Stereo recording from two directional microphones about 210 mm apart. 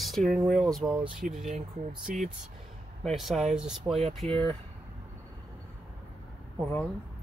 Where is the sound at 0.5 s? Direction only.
Centre (ahead or behind).